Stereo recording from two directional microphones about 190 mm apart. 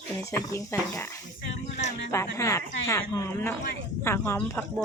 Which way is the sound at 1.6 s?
35° left (ahead or behind).